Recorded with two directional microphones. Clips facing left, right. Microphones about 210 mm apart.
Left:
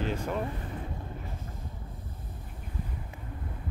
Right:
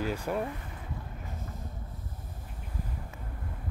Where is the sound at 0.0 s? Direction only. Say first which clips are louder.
Even; 10° right (ahead or behind).